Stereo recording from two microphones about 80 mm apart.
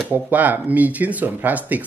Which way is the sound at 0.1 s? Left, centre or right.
Right.